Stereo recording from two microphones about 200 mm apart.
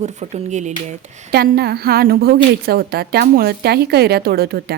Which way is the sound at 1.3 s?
50° right (ahead or behind).